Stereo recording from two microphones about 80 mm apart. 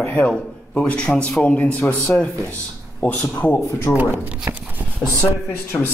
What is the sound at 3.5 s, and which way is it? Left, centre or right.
Speech, left.